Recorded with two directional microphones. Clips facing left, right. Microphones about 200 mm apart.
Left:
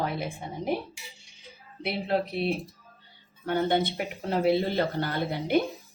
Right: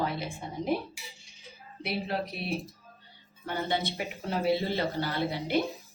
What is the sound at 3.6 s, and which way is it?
A woman's voice, 55° left (ahead or behind).